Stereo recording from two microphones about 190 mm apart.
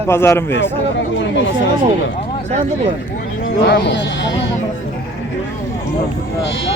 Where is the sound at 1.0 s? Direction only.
70° left (ahead or behind).